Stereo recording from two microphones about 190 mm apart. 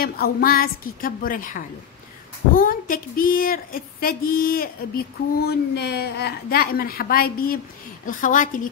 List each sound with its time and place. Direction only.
0.0 s a woman's voice: 50° left (ahead or behind)